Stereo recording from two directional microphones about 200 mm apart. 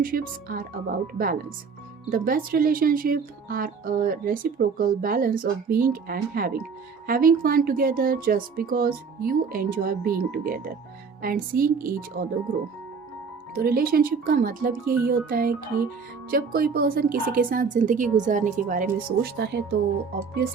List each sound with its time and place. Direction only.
0.0 s speech: 45° right (ahead or behind)
13.6 s speech: 45° right (ahead or behind)